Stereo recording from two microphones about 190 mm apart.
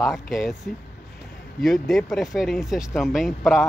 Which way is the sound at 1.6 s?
Centre (ahead or behind).